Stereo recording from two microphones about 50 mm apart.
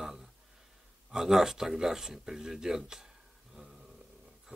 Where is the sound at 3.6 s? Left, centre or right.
Right.